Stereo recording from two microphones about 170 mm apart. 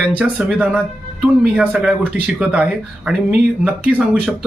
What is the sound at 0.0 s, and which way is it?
Speech, 5° right (ahead or behind).